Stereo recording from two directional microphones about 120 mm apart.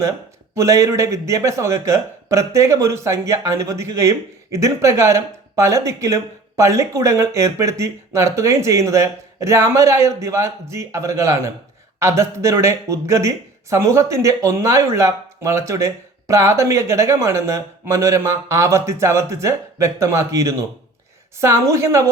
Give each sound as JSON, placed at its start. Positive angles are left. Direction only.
{"t": 0.5, "sound": "speech", "side_deg": -25}